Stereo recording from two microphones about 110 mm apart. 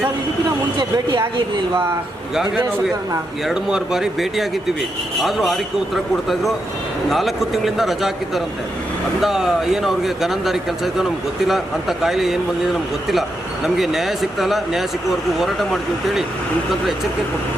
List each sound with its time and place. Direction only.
0.8 s speech: 45° right (ahead or behind)
3.4 s speech: 5° right (ahead or behind)
9.2 s speech: 5° right (ahead or behind)
13.7 s speech: centre (ahead or behind)